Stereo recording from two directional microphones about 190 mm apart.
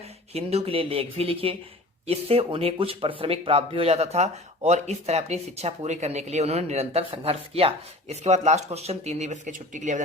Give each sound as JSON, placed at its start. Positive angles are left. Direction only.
{"t": 0.3, "sound": "speech", "side_deg": -30}